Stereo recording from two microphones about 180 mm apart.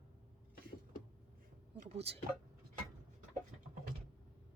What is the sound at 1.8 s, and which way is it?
Speech, 35° right (ahead or behind).